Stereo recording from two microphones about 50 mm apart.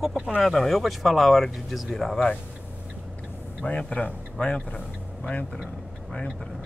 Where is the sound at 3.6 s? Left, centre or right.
Left.